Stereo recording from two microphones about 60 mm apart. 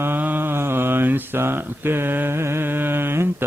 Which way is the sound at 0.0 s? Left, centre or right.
Right.